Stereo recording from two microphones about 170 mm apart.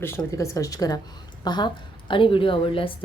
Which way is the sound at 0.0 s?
15° left (ahead or behind).